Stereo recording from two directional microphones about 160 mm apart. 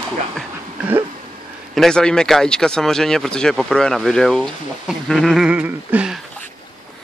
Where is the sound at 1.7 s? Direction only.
5° left (ahead or behind).